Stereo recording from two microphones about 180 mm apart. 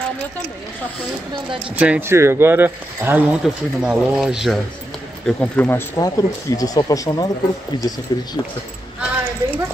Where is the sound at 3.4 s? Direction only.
Centre (ahead or behind).